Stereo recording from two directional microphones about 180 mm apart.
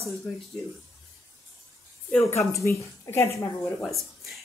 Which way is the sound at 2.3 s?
15° left (ahead or behind).